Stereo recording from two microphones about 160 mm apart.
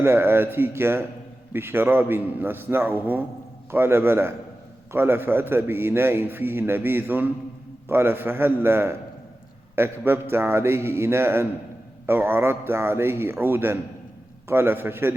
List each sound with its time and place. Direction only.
0.0 s a man's voice: 15° right (ahead or behind)